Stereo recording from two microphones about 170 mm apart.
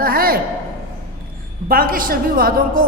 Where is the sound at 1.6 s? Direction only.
55° right (ahead or behind).